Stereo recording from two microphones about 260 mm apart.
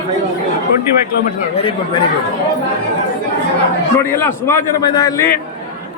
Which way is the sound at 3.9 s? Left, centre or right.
Centre.